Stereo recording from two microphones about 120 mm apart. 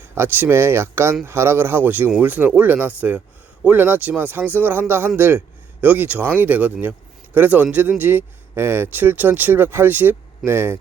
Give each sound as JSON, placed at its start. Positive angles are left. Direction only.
{"t": 0.0, "sound": "speech", "side_deg": -20}